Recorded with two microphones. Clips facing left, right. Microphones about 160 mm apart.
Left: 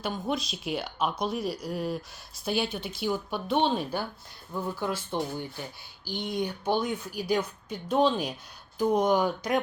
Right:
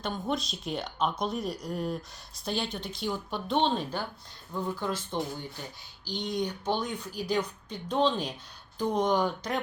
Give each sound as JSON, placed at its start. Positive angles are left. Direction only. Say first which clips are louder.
{"t": 0.0, "sound": "a woman's voice", "louder": "left 1 dB", "side_deg": 0}
{"t": 6.1, "sound": "a woman's voice", "louder": "left 1 dB", "side_deg": 10}